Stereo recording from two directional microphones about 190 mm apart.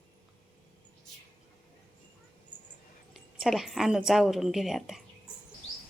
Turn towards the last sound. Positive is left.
turn(degrees=0)  # may be behind; listen again after turning